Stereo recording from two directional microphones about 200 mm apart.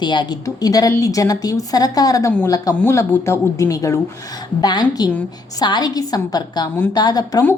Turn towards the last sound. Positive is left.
turn(degrees=15)  # may be behind; listen again after turning